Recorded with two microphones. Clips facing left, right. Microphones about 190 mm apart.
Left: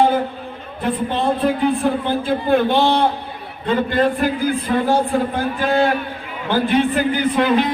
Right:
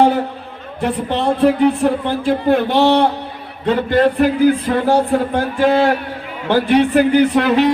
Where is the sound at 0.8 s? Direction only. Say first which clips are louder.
Right 2 dB; 75° right (ahead or behind).